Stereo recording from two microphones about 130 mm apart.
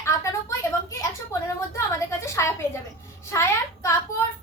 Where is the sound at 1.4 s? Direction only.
25° left (ahead or behind).